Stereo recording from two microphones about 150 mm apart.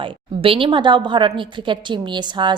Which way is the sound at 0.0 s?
35° right (ahead or behind).